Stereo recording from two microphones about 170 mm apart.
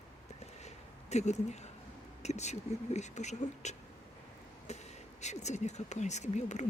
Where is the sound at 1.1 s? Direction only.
40° left (ahead or behind).